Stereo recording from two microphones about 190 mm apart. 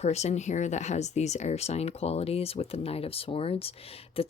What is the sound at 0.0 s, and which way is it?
Speech, 35° left (ahead or behind).